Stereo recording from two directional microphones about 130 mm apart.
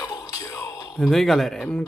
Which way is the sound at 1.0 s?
Centre (ahead or behind).